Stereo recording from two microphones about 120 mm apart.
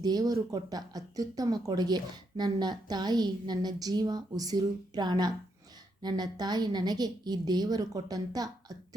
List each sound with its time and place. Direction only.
0.0 s speech: 35° right (ahead or behind)